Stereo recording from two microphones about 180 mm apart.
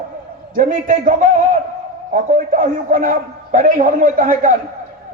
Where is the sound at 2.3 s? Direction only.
50° right (ahead or behind).